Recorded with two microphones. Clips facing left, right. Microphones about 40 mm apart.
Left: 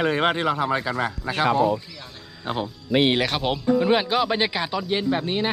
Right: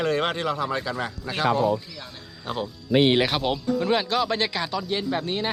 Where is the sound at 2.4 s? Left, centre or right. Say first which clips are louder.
Left 2 dB; left.